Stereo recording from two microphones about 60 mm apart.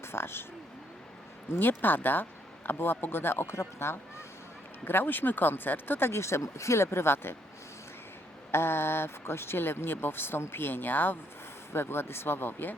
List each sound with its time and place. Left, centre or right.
0.0 s speech: left
1.5 s speech: left
4.9 s speech: left
8.5 s speech: left